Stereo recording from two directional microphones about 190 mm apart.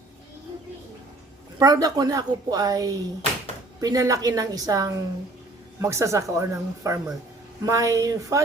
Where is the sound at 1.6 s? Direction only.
20° right (ahead or behind).